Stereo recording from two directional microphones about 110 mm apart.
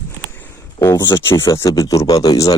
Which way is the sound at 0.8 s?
35° left (ahead or behind).